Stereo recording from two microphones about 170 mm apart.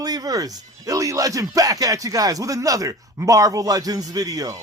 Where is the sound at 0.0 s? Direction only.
20° right (ahead or behind).